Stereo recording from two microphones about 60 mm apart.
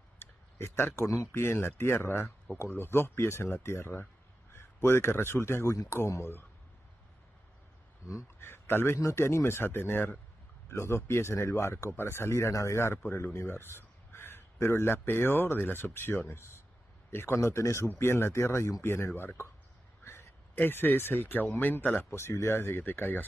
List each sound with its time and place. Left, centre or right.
0.2 s a sound: left
1.0 s speech: left
1.3 s speech: left
8.4 s a man's voice: left
22.1 s speech: left